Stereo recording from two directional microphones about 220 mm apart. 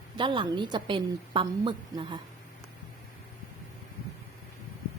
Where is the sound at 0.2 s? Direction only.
20° right (ahead or behind).